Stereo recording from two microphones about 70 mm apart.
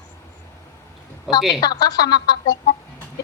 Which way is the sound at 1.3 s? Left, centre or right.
Centre.